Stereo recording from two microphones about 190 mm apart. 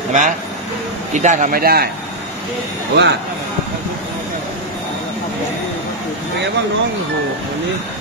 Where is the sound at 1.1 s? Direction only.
40° right (ahead or behind).